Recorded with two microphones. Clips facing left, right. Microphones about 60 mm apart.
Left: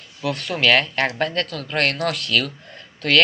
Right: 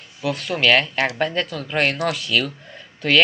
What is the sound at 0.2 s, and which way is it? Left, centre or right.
Speech, centre.